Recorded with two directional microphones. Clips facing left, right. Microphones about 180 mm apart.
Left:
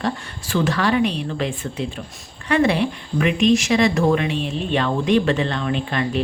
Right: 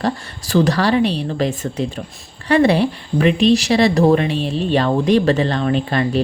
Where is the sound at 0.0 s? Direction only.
40° right (ahead or behind).